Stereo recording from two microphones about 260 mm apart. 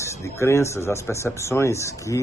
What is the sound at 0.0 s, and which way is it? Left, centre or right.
Speech, centre.